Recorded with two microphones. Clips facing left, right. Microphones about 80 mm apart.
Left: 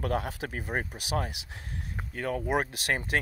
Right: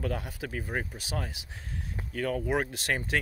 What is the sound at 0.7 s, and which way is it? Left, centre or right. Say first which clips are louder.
Speech: left 2 dB; left.